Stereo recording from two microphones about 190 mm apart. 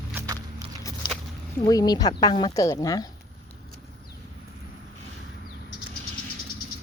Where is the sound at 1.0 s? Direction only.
25° left (ahead or behind).